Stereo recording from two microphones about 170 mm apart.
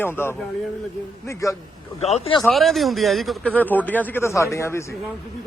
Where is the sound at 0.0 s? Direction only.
15° left (ahead or behind).